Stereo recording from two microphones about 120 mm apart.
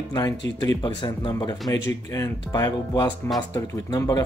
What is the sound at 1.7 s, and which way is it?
Speech, 25° left (ahead or behind).